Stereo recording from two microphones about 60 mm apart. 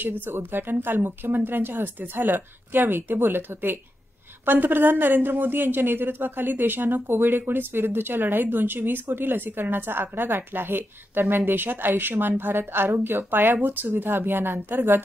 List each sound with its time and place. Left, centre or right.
0.2 s a woman's voice: right